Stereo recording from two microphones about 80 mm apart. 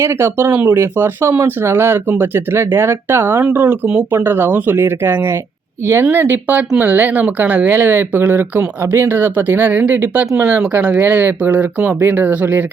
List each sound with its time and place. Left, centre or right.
0.0 s speech: right
3.4 s speech: right
4.1 s speech: right